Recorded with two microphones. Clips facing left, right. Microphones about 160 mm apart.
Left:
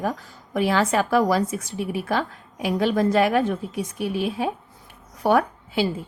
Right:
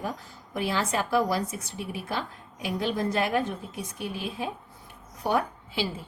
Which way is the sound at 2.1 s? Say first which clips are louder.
Left 8 dB; 75° left (ahead or behind).